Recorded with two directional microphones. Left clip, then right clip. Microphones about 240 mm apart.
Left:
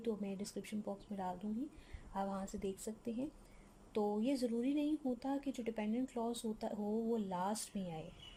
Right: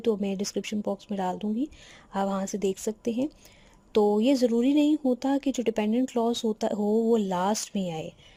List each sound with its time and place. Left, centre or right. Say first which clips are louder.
0.0 s speech: right 15 dB; right